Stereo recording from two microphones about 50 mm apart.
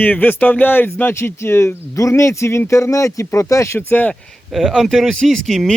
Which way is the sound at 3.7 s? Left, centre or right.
Left.